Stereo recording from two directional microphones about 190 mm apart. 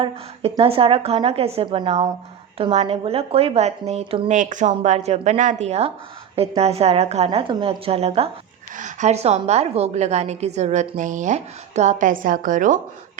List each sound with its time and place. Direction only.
0.0 s a woman's voice: 25° right (ahead or behind); by 12.8 s 45° right (ahead or behind)